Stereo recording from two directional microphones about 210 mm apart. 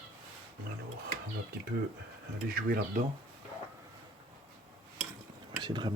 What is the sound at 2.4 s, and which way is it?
Speech, 45° right (ahead or behind).